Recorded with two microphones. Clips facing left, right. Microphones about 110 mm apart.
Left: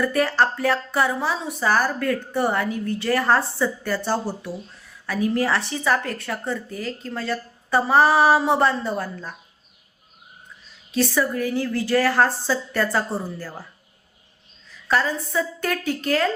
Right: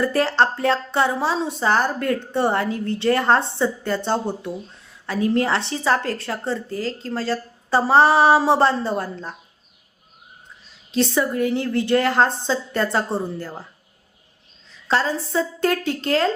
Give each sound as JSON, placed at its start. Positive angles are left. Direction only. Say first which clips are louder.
{"t": 0.0, "sound": "speech", "louder": "right 1 dB", "side_deg": -30}
{"t": 10.9, "sound": "speech", "louder": "right 1 dB", "side_deg": -25}
{"t": 14.8, "sound": "speech", "louder": "right 1 dB", "side_deg": -30}